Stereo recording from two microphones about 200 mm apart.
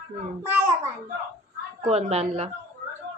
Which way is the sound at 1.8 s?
30° right (ahead or behind).